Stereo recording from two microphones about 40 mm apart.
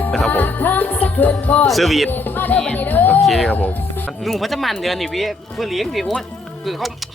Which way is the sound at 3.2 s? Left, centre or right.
Centre.